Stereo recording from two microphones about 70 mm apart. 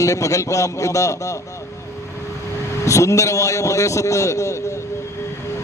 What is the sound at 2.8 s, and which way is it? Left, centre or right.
A man's voice, left.